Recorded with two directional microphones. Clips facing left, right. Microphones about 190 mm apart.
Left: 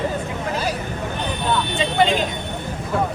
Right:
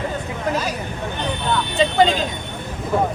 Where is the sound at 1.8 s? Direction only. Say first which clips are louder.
Right 4 dB; 35° right (ahead or behind).